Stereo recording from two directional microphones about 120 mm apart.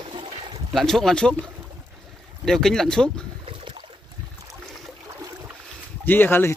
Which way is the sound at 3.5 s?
45° right (ahead or behind).